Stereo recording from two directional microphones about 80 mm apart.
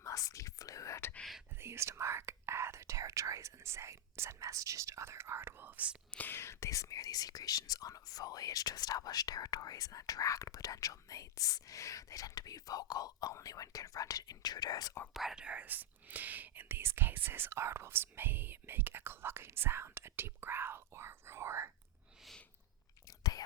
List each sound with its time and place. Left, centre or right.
0.0 s whispering: left
1.5 s speech: right
6.1 s speech: left
15.1 s speech: centre; by 21.7 s right
23.0 s whispering: left